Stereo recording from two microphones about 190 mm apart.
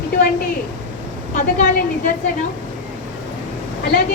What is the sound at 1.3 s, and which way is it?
Speech, 50° left (ahead or behind).